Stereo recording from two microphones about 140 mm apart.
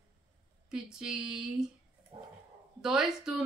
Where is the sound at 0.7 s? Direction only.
5° right (ahead or behind).